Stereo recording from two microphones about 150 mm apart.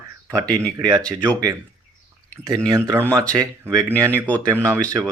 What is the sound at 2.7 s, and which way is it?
Speech, 20° right (ahead or behind).